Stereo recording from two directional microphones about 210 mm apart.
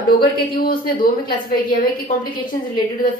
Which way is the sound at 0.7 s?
40° left (ahead or behind).